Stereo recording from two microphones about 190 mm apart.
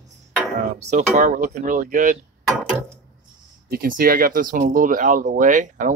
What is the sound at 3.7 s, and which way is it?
Speech, 50° right (ahead or behind).